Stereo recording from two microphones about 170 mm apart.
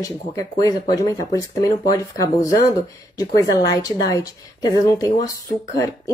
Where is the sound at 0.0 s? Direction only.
20° left (ahead or behind).